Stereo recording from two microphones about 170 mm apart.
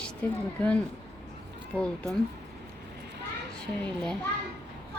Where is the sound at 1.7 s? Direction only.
5° left (ahead or behind).